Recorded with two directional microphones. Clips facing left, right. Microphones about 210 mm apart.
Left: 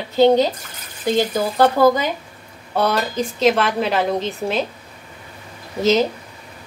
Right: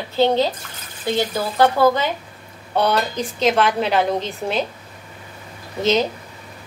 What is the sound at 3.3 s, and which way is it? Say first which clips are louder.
A woman's voice: left 1 dB; centre (ahead or behind).